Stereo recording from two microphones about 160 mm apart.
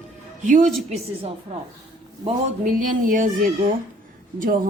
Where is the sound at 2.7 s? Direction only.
55° right (ahead or behind).